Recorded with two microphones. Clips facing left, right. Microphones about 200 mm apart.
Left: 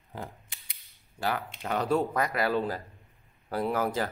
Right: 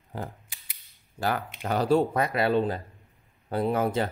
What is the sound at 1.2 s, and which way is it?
Speech, 45° right (ahead or behind).